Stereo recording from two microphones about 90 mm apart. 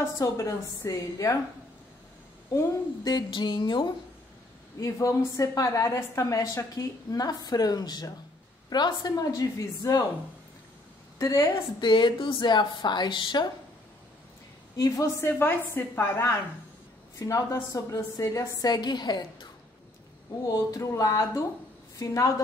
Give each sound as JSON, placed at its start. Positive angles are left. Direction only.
{"t": 0.2, "sound": "a woman's voice", "side_deg": 35}
{"t": 2.5, "sound": "a woman's voice", "side_deg": 45}
{"t": 3.3, "sound": "a woman's voice", "side_deg": 60}
{"t": 4.7, "sound": "a woman's voice", "side_deg": 35}
{"t": 11.1, "sound": "a woman's voice", "side_deg": 35}
{"t": 11.8, "sound": "a woman's voice", "side_deg": 60}
{"t": 14.8, "sound": "a woman's voice", "side_deg": 35}
{"t": 17.2, "sound": "a woman's voice", "side_deg": 40}
{"t": 18.6, "sound": "a woman's voice", "side_deg": 50}
{"t": 20.4, "sound": "a woman's voice", "side_deg": 40}